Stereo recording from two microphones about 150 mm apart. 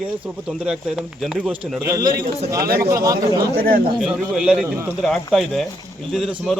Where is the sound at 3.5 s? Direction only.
80° right.